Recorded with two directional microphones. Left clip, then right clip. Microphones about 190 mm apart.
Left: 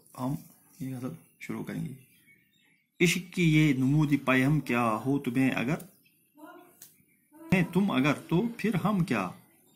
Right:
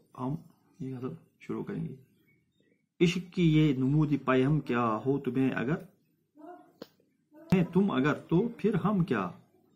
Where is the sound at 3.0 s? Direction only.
20° left (ahead or behind).